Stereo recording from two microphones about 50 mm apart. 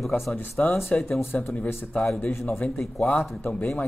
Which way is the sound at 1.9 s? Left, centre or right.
Left.